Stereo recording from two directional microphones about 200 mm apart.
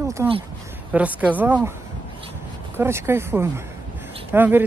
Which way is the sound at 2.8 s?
10° right (ahead or behind).